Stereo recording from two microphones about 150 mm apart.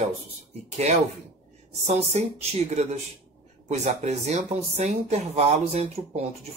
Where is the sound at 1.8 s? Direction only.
45° right (ahead or behind).